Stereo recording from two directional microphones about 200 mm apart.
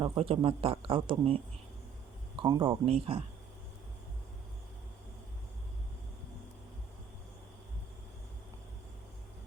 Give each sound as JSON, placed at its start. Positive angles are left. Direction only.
{"t": 0.0, "sound": "speech", "side_deg": -25}